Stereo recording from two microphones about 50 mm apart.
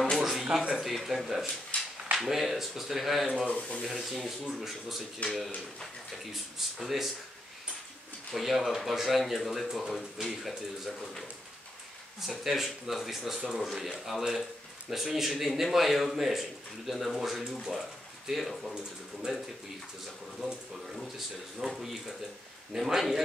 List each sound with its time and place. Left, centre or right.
0.0 s a sound: centre
0.7 s a man's voice: centre
1.7 s a sound: left
2.1 s a man's voice: centre
3.4 s speech: centre
3.8 s a man's voice: centre
6.3 s a man's voice: centre
8.3 s a man's voice: centre
12.2 s a man's voice: centre